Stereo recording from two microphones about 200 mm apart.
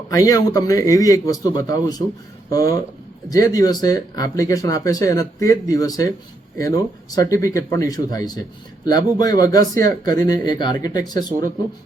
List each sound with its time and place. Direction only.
0.1 s speech: 15° left (ahead or behind)
7.2 s speech: 15° left (ahead or behind)
11.3 s speech: 40° right (ahead or behind)